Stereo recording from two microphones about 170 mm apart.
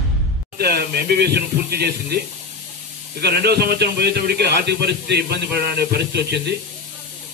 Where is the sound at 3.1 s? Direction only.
70° right (ahead or behind).